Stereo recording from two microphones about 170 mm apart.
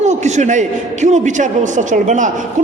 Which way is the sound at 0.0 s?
45° right (ahead or behind).